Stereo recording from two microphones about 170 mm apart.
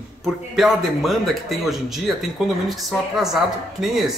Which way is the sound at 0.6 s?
Centre (ahead or behind).